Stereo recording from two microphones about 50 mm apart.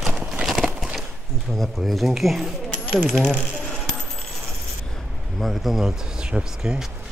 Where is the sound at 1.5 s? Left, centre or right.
Centre.